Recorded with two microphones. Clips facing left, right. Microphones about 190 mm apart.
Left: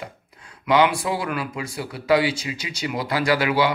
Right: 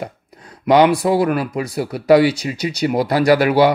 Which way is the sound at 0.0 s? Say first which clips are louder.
Right 8 dB; 40° right (ahead or behind).